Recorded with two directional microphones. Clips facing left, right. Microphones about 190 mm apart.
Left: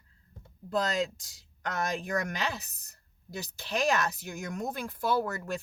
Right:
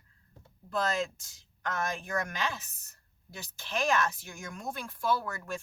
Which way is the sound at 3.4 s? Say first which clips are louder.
Left 2 dB; 35° left (ahead or behind).